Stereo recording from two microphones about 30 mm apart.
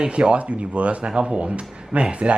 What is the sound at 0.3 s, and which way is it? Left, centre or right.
Speech, right.